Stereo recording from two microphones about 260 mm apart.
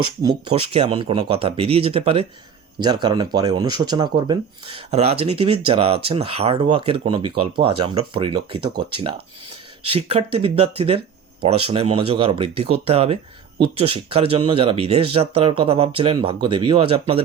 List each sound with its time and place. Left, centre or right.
0.0 s speech: centre